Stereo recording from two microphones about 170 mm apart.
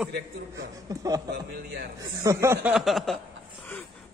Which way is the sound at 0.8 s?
20° right (ahead or behind).